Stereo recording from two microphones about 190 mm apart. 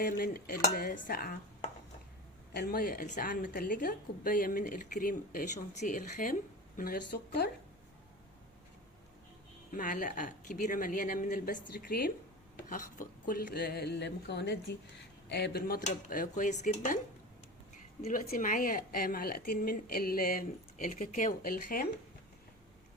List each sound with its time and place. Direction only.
0.0 s a woman's voice: 50° left (ahead or behind)
2.5 s a woman's voice: 55° left (ahead or behind)
9.7 s a woman's voice: 45° left (ahead or behind)
18.0 s a woman's voice: 45° left (ahead or behind)